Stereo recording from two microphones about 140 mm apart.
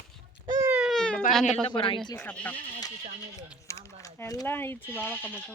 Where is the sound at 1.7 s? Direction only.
40° left (ahead or behind).